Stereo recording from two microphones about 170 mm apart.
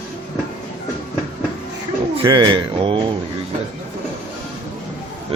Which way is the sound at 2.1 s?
25° right (ahead or behind).